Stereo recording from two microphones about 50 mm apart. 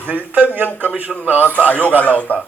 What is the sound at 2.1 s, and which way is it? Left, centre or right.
Speech, left.